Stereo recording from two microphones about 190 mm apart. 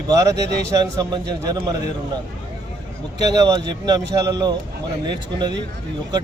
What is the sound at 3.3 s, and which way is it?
Speech, 20° right (ahead or behind).